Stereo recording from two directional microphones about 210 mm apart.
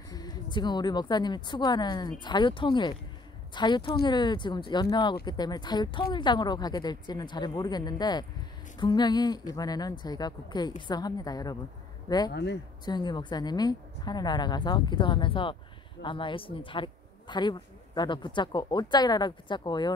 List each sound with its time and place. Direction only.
0.1 s speech: 20° left (ahead or behind)
12.3 s speech: 55° left (ahead or behind)
12.8 s speech: 20° left (ahead or behind)